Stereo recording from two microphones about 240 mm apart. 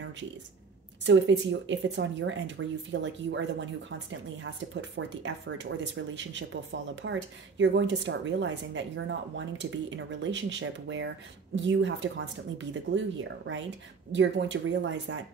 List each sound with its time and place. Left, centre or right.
0.0 s a sound: right
1.0 s speech: right
4.9 s speech: right